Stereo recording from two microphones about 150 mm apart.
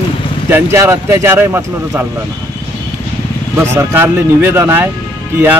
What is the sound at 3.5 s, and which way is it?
Speech, 15° right (ahead or behind).